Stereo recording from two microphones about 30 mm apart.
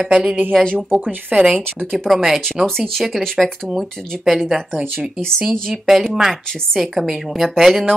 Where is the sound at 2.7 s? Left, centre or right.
Centre.